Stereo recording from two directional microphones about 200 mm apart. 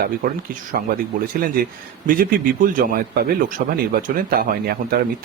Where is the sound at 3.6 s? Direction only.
55° right (ahead or behind).